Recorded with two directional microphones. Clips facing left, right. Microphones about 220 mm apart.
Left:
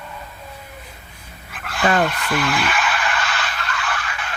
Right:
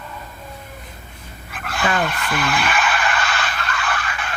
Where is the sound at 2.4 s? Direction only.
50° right (ahead or behind).